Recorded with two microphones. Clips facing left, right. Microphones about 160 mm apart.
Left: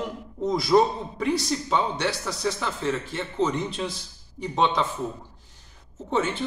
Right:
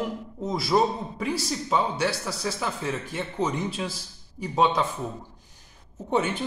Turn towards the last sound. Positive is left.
turn(degrees=-15)  # may be behind; listen again after turning